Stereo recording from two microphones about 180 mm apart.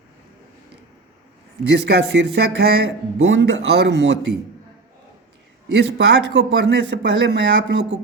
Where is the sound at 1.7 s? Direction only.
70° right (ahead or behind).